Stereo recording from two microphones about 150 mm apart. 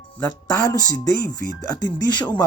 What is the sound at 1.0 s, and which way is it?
Speech, 60° right (ahead or behind).